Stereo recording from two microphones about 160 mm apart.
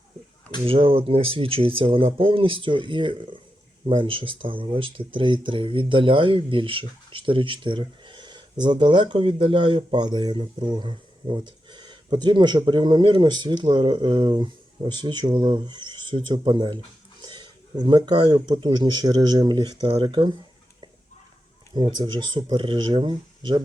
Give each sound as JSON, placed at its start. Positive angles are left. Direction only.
{"t": 0.6, "sound": "speech", "side_deg": -35}
{"t": 21.8, "sound": "speech", "side_deg": -30}